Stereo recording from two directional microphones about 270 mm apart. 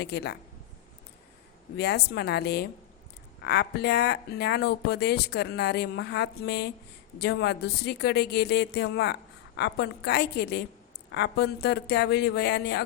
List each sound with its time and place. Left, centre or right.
0.0 s speech: left
1.7 s speech: left